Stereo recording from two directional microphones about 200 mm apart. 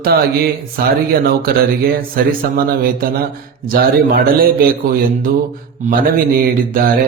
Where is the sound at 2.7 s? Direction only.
50° right (ahead or behind).